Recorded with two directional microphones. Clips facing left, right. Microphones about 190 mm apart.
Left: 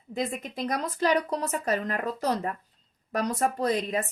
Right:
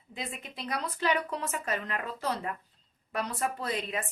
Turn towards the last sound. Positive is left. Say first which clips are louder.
# left 7 dB
turn(degrees=40)  # may be behind; listen again after turning